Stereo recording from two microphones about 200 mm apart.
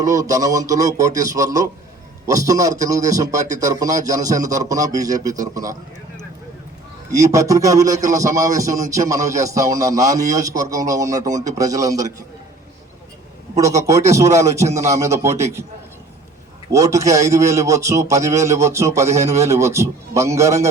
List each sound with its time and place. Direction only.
0.0 s speech: 15° right (ahead or behind)
7.1 s speech: 15° right (ahead or behind)
13.6 s speech: 15° right (ahead or behind)
16.7 s speech: 15° right (ahead or behind)